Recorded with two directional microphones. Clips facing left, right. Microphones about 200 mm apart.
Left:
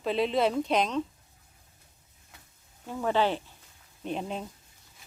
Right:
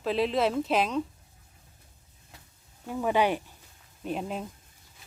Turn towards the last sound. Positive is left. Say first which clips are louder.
# right 1 dB
turn(degrees=-5)  # may be behind; listen again after turning